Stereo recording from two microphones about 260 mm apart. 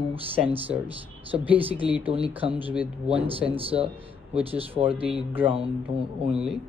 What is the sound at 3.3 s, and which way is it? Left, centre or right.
Speech, right.